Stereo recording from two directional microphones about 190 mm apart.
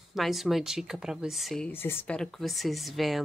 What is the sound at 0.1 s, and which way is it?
A woman's voice, centre (ahead or behind).